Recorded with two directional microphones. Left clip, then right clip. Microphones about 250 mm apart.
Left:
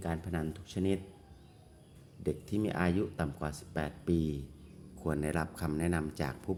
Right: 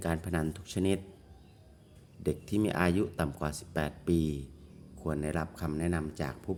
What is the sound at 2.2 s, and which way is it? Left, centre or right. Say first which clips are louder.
Speech: right 3 dB; centre.